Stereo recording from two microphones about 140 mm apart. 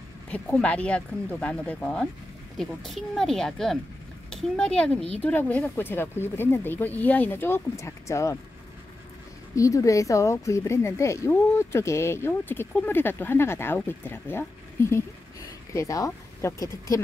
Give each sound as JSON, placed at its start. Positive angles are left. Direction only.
{"t": 0.3, "sound": "speech", "side_deg": 10}
{"t": 9.6, "sound": "speech", "side_deg": 25}